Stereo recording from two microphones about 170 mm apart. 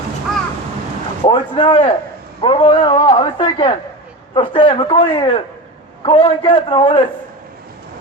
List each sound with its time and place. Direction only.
1.2 s a man's voice: 30° left (ahead or behind)